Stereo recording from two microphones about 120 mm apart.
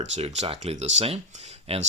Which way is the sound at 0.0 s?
70° right (ahead or behind).